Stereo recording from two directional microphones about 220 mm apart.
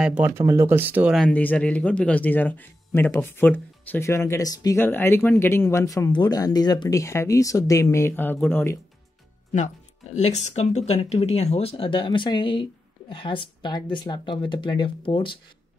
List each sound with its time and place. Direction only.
0.0 s speech: 10° right (ahead or behind); by 8.7 s 10° left (ahead or behind)
10.1 s speech: 30° left (ahead or behind)